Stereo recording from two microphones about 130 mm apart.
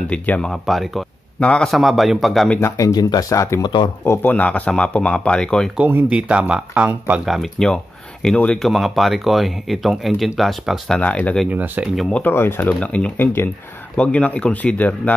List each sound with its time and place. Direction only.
0.1 s speech: 5° left (ahead or behind)
2.6 s speech: 25° left (ahead or behind)
3.6 s speech: 35° left (ahead or behind)
4.0 s speech: 15° left (ahead or behind)
5.8 s speech: 10° right (ahead or behind)
11.0 s speech: 10° left (ahead or behind)
11.4 s speech: 15° right (ahead or behind)
11.9 s speech: centre (ahead or behind)
12.2 s speech: 15° left (ahead or behind)